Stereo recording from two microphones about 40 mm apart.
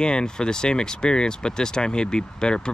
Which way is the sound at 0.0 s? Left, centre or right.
Left.